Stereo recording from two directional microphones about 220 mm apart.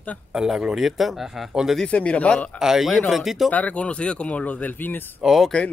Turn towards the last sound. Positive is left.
turn(degrees=5)  # may be behind; listen again after turning